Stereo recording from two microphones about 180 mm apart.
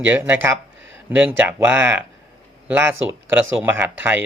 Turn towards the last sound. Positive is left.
turn(degrees=-10)  # may be behind; listen again after turning